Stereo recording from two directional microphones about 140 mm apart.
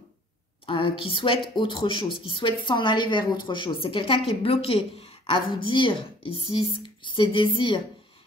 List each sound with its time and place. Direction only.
0.7 s speech: 35° left (ahead or behind)